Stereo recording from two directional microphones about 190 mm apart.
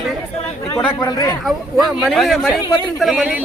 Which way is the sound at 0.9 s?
20° left (ahead or behind).